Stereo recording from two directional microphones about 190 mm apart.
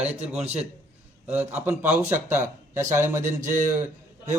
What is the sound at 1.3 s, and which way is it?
Speech, 10° right (ahead or behind).